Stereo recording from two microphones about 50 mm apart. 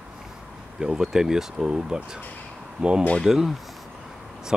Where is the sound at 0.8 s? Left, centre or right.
Centre.